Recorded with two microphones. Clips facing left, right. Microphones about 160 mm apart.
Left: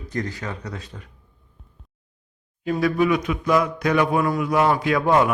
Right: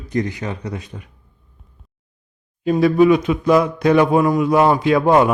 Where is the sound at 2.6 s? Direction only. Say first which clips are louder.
Right 7 dB; 25° right (ahead or behind).